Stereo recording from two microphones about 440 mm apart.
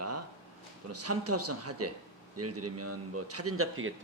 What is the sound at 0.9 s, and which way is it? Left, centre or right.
A man's voice, right.